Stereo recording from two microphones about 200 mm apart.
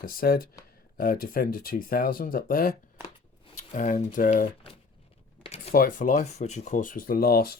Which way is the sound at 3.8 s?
40° left (ahead or behind).